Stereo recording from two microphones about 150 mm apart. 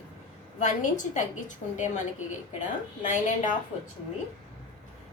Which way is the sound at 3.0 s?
55° left (ahead or behind).